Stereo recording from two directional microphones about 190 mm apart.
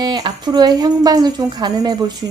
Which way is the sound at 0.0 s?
20° right (ahead or behind).